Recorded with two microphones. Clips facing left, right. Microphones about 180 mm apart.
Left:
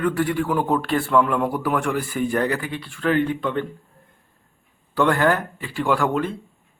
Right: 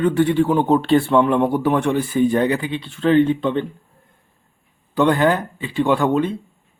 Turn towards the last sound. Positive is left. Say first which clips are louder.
# right 4 dB
turn(degrees=-20)  # may be behind; listen again after turning